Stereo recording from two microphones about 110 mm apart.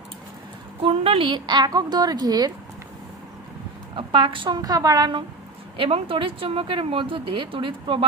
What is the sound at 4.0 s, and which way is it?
Speech, 50° right (ahead or behind).